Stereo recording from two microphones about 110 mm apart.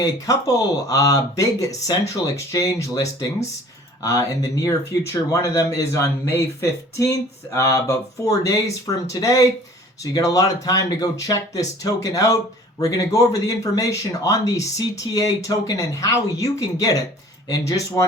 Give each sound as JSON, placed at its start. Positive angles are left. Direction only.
{"t": 0.0, "sound": "speech", "side_deg": 30}